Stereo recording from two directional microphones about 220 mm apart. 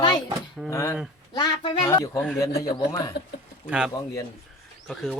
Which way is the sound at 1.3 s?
20° left (ahead or behind).